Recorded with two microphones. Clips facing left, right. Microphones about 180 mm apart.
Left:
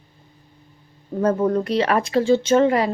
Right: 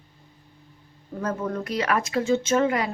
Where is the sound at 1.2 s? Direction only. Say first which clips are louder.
Left 9 dB; 35° left (ahead or behind).